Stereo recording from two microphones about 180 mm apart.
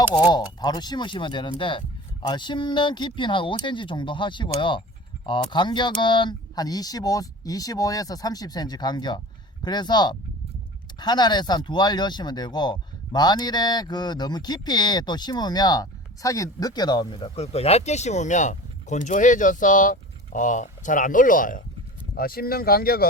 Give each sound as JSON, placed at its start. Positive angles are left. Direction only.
{"t": 0.3, "sound": "speech", "side_deg": 20}